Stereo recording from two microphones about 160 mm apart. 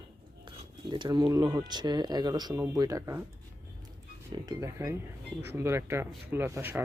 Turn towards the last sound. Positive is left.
turn(degrees=-15)  # may be behind; listen again after turning